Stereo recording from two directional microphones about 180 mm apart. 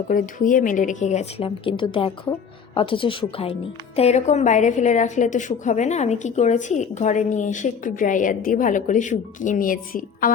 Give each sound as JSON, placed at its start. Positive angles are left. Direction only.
{"t": 0.1, "sound": "a woman's voice", "side_deg": 45}